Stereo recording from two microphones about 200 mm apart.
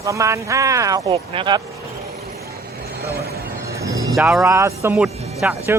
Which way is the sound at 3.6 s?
15° right (ahead or behind).